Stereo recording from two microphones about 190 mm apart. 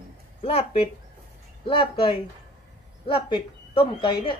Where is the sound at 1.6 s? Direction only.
25° left (ahead or behind).